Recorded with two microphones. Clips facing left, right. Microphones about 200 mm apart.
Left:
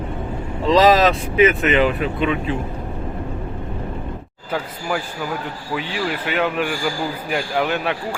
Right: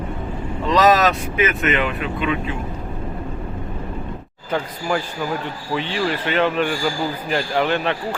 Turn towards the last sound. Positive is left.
turn(degrees=5)  # may be behind; listen again after turning